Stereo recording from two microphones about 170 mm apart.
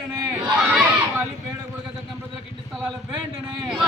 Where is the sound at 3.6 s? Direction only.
5° right (ahead or behind).